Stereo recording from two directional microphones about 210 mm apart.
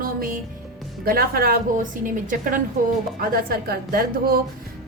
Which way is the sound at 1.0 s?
45° right (ahead or behind).